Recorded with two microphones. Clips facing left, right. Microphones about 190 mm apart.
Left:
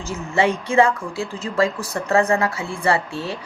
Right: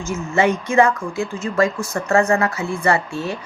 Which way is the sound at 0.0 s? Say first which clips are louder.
Right 2 dB; 30° left (ahead or behind).